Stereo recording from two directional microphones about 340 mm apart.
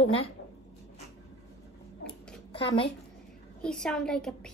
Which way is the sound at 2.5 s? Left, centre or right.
Centre.